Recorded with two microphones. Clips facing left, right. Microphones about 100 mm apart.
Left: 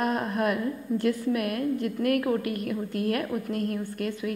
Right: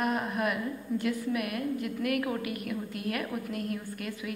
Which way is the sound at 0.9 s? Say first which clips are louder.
Left 4 dB; 40° left (ahead or behind).